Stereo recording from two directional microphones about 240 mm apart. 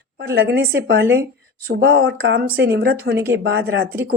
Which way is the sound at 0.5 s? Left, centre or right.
Right.